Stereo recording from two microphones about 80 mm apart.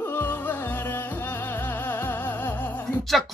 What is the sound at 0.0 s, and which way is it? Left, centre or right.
Music, left.